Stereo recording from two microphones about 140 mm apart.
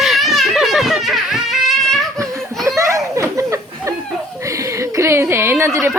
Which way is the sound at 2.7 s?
20° right (ahead or behind).